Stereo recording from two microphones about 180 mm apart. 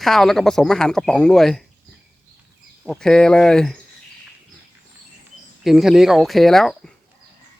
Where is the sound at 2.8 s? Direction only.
5° left (ahead or behind).